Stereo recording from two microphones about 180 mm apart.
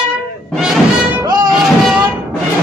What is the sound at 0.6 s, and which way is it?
Music, 5° right (ahead or behind).